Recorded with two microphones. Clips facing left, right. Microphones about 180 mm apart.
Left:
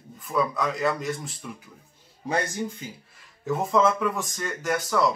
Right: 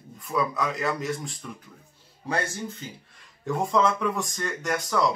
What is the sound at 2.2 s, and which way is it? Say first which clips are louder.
Speech: left 2 dB; 15° left (ahead or behind).